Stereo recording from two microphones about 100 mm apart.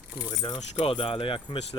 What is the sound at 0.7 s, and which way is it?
Speech, 80° left.